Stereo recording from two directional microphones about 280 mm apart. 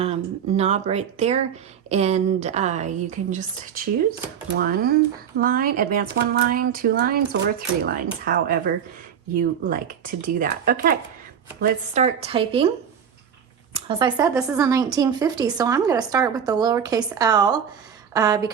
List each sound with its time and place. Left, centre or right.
0.0 s a woman's voice: right
13.7 s speech: centre